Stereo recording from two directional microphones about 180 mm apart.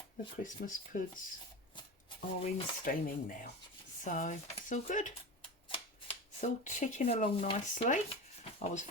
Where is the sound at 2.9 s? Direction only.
50° left (ahead or behind).